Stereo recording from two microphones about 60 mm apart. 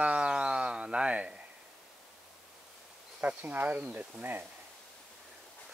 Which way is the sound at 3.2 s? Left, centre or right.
Right.